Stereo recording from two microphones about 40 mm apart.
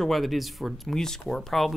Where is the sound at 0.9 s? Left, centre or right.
Centre.